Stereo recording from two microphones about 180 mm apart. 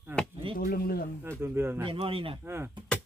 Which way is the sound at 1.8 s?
30° right (ahead or behind).